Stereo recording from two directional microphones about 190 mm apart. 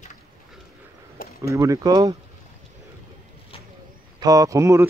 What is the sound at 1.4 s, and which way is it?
Speech, 15° right (ahead or behind).